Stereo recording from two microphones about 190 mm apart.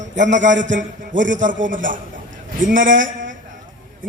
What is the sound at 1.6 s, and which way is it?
Speech, 45° right (ahead or behind).